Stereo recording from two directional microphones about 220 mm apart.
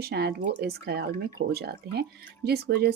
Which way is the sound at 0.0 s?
50° right (ahead or behind).